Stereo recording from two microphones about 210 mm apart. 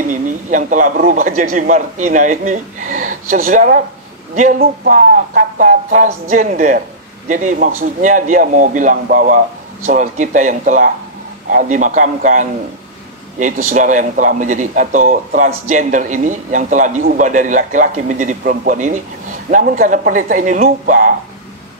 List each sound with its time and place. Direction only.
0.1 s a man's voice: 40° right (ahead or behind)